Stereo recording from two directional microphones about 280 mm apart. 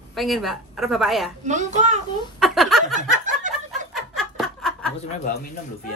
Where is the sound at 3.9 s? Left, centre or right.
Centre.